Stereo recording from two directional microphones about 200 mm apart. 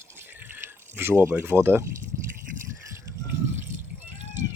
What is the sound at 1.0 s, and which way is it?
Speech, 10° right (ahead or behind).